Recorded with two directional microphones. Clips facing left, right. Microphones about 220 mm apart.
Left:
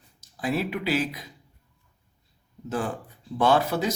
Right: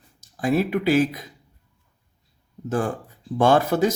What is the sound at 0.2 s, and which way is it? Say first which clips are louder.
Speech: right 6 dB; 45° right (ahead or behind).